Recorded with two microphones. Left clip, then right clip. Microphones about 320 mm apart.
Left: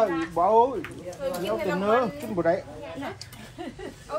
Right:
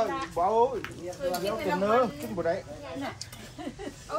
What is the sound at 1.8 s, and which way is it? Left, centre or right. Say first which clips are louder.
Speech: left 1 dB; left.